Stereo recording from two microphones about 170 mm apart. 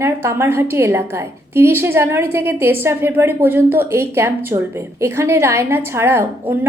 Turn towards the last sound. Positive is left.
turn(degrees=-15)  # may be behind; listen again after turning